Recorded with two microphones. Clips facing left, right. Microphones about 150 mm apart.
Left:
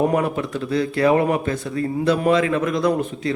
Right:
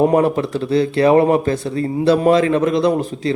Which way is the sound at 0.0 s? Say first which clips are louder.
Right 5 dB; 35° right (ahead or behind).